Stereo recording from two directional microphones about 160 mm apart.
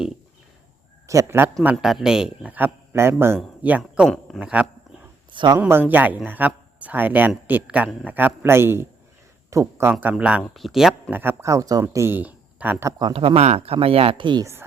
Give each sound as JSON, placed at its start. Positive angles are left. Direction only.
{"t": 1.0, "sound": "a man's voice", "side_deg": -20}
{"t": 1.6, "sound": "speech", "side_deg": -5}
{"t": 5.3, "sound": "speech", "side_deg": -30}
{"t": 5.5, "sound": "speech", "side_deg": -15}
{"t": 11.1, "sound": "speech", "side_deg": -10}
{"t": 13.0, "sound": "speech", "side_deg": -30}